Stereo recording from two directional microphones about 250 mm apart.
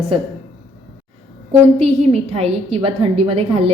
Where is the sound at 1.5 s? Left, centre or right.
Right.